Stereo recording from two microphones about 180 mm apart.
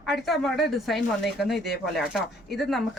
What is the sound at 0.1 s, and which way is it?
Speech, centre (ahead or behind).